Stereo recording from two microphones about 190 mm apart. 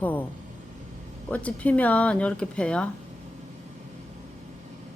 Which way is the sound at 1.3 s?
5° left (ahead or behind).